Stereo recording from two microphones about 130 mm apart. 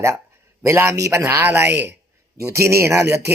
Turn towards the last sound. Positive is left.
turn(degrees=-20)  # may be behind; listen again after turning